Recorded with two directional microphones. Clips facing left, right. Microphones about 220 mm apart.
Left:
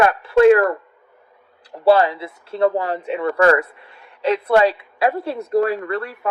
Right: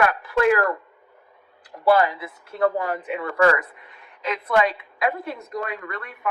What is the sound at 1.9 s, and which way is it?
Speech, 30° left (ahead or behind).